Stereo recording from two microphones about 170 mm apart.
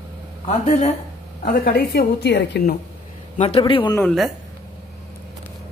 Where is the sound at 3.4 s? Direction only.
35° left (ahead or behind).